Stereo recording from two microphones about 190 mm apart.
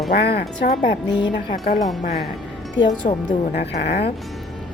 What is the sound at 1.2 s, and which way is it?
Speech, 25° left (ahead or behind).